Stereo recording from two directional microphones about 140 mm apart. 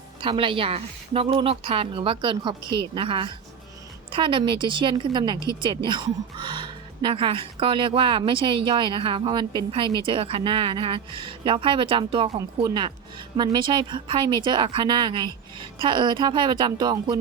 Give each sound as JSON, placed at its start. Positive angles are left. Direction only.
{"t": 0.2, "sound": "a woman's voice", "side_deg": -40}